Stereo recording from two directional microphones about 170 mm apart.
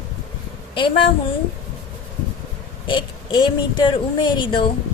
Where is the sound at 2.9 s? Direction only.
25° left (ahead or behind).